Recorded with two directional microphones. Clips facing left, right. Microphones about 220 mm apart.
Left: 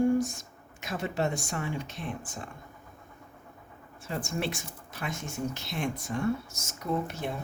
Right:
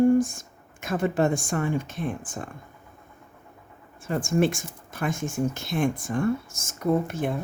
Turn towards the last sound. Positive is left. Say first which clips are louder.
# right 7 dB
turn(degrees=-50)  # may be behind; listen again after turning